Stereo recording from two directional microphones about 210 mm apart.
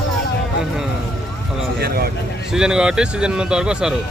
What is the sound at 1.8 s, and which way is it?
Speech, 45° right (ahead or behind).